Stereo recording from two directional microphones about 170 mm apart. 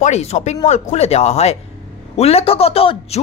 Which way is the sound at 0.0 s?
40° left (ahead or behind).